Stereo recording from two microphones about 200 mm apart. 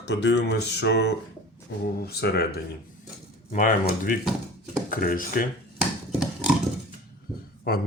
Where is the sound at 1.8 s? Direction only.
50° left (ahead or behind).